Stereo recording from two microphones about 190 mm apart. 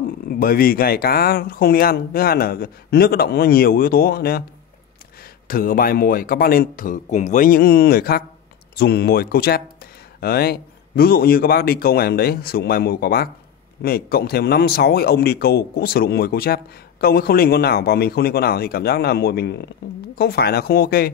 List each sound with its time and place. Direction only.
0.3 s speech: 50° left (ahead or behind)
5.5 s speech: 50° left (ahead or behind)